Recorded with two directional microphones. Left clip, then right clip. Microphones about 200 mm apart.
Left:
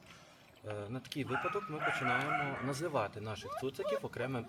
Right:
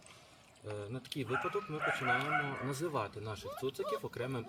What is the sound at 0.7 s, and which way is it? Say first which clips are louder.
Speech: left 1 dB; centre (ahead or behind).